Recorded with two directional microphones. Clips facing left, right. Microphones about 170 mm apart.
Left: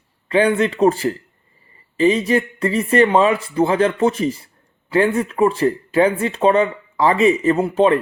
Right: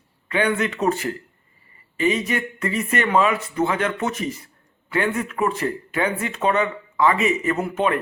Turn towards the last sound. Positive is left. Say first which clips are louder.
# left 7 dB
turn(degrees=30)  # may be behind; listen again after turning